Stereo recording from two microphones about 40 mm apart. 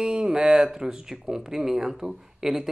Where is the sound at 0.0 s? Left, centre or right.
Right.